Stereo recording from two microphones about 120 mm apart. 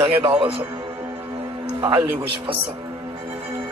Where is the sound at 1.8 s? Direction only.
45° right (ahead or behind).